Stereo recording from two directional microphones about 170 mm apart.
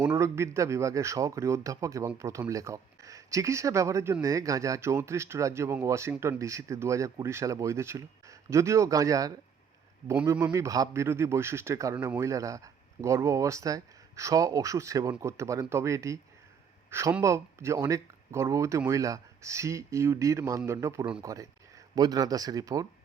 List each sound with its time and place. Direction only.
0.0 s a man's voice: 15° right (ahead or behind)